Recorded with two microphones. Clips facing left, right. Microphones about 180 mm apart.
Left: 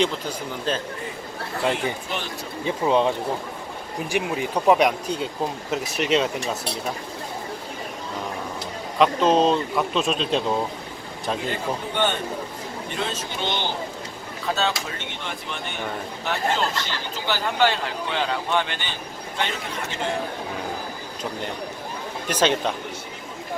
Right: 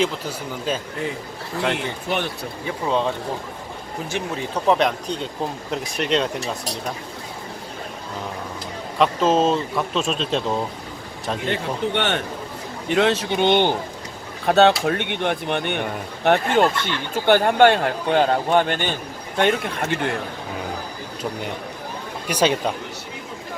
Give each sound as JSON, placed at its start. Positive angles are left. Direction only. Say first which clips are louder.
{"t": 0.0, "sound": "speech", "louder": "right 1 dB", "side_deg": -10}
{"t": 2.0, "sound": "speech", "louder": "right 6 dB", "side_deg": -60}
{"t": 2.6, "sound": "speech", "louder": "left 2 dB", "side_deg": 15}
{"t": 4.1, "sound": "speech", "louder": "left 2 dB", "side_deg": 10}
{"t": 9.0, "sound": "speech", "louder": "even", "side_deg": -5}
{"t": 11.5, "sound": "speech", "louder": "right 3 dB", "side_deg": -75}
{"t": 22.3, "sound": "speech", "louder": "right 2 dB", "side_deg": -10}